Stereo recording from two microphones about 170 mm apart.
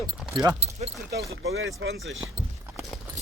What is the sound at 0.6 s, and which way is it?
Speech, 35° right (ahead or behind).